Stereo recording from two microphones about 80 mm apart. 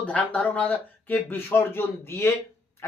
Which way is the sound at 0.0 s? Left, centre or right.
Centre.